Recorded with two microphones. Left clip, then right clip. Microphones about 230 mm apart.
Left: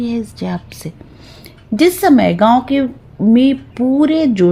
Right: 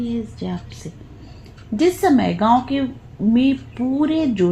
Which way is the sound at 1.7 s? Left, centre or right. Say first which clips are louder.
Left 5 dB; left.